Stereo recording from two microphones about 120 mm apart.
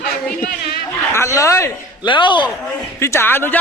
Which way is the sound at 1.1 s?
25° left (ahead or behind).